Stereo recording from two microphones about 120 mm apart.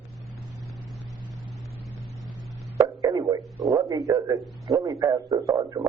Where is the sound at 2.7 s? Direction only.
30° right (ahead or behind).